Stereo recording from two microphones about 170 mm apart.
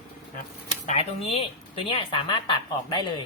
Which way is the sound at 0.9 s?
40° left (ahead or behind).